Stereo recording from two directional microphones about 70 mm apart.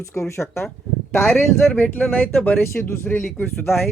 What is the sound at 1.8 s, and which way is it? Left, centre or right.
Speech, left.